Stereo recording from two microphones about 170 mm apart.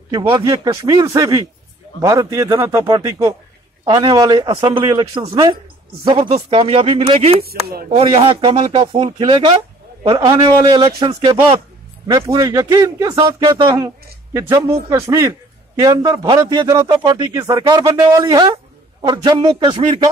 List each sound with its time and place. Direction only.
0.1 s speech: 30° right (ahead or behind)
7.4 s speech: 65° right (ahead or behind)
7.9 s speech: 35° right (ahead or behind); by 13.2 s 20° right (ahead or behind)
13.4 s speech: 30° right (ahead or behind)
13.7 s a man's voice: 15° right (ahead or behind)